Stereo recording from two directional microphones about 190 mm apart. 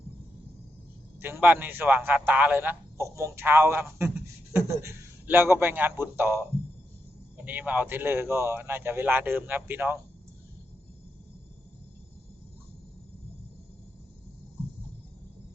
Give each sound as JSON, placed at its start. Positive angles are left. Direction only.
{"t": 1.2, "sound": "a man's voice", "side_deg": -10}
{"t": 7.4, "sound": "a man's voice", "side_deg": -10}